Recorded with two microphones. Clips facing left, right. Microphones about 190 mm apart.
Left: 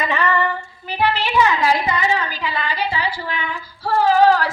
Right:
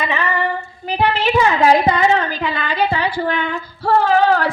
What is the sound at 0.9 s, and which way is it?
A woman's voice, 45° right (ahead or behind).